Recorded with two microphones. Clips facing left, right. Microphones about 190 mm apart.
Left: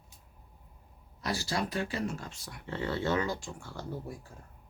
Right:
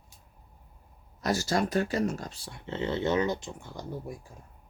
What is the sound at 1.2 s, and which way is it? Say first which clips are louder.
Speech: right 6 dB; 45° right (ahead or behind).